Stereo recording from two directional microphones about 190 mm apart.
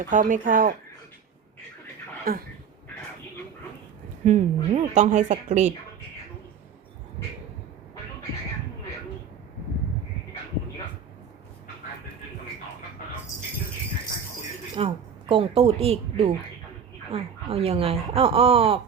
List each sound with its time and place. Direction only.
0.1 s speech: 45° right (ahead or behind)
2.3 s speech: 50° right (ahead or behind)
4.2 s speech: 35° right (ahead or behind)
14.8 s speech: 30° right (ahead or behind)